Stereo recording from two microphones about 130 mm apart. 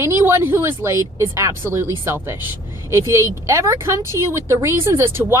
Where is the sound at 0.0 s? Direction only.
20° right (ahead or behind).